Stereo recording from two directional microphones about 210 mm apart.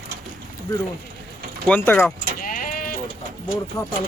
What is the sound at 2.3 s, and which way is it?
Sheep, 40° left (ahead or behind).